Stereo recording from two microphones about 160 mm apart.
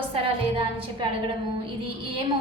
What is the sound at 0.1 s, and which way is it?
Speech, 35° right (ahead or behind).